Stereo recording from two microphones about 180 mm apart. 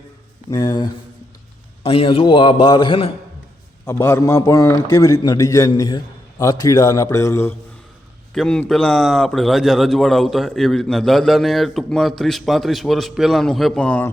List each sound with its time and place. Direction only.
0.5 s a man's voice: 20° left (ahead or behind)
1.8 s a man's voice: 30° left (ahead or behind)
3.8 s a man's voice: 15° left (ahead or behind)
8.3 s a man's voice: 5° left (ahead or behind)